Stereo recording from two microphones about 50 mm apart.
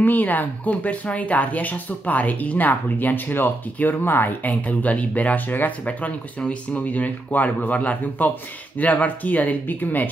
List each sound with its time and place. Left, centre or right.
0.0 s speech: left
4.5 s speech: left